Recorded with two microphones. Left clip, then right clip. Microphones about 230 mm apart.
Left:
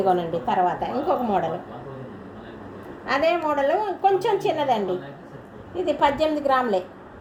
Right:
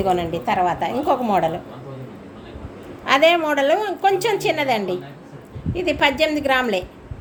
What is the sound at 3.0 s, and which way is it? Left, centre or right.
A woman's voice, right.